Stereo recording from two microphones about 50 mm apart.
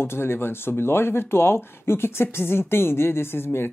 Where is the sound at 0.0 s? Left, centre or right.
Left.